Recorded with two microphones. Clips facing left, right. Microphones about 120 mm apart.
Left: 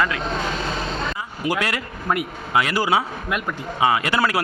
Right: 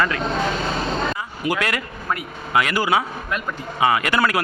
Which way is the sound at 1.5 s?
25° left (ahead or behind).